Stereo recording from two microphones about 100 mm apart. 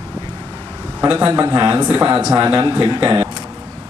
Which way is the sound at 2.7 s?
40° right (ahead or behind).